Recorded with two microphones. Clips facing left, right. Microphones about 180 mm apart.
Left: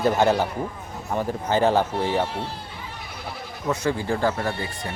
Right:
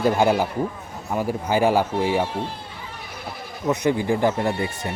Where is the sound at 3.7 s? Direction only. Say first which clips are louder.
Right 3 dB; 20° right (ahead or behind).